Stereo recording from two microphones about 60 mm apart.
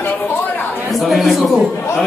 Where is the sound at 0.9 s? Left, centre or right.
Centre.